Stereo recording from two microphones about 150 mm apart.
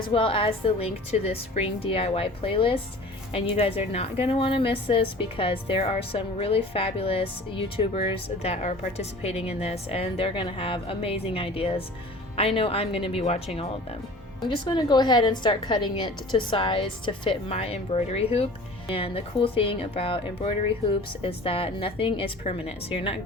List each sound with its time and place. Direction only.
0.1 s a woman's voice: 35° left (ahead or behind)
14.7 s a woman's voice: 30° left (ahead or behind)